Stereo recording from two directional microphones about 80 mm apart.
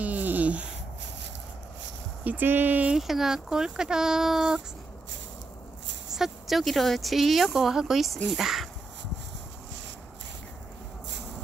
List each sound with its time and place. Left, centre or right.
0.0 s a sound: right
2.2 s speech: right
2.9 s speech: centre
6.1 s speech: centre